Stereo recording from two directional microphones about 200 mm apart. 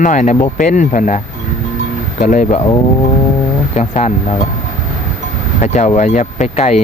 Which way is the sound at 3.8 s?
35° left (ahead or behind).